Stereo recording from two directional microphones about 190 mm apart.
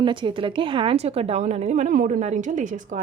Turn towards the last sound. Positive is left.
turn(degrees=-40)  # may be behind; listen again after turning